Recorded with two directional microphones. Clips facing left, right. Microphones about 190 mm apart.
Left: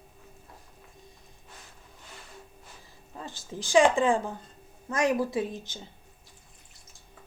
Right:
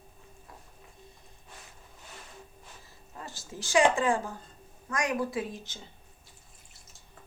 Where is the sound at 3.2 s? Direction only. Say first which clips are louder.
Left 4 dB; 15° left (ahead or behind).